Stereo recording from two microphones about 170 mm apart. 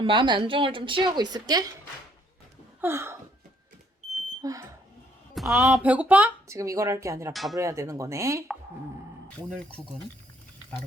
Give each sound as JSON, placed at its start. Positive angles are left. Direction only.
{"t": 0.0, "sound": "a woman's voice", "side_deg": -30}
{"t": 2.8, "sound": "speech", "side_deg": -15}
{"t": 4.4, "sound": "a woman's voice", "side_deg": -20}
{"t": 5.3, "sound": "a sound", "side_deg": 0}
{"t": 5.6, "sound": "speech", "side_deg": -5}